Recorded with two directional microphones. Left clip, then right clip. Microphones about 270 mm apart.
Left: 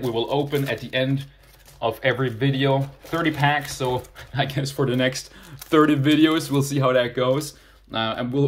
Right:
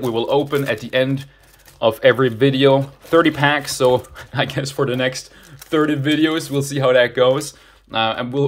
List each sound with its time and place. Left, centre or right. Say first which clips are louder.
0.3 s speech: right 6 dB; centre